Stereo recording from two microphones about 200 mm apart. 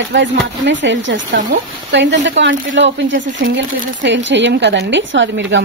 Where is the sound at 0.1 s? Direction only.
65° right (ahead or behind).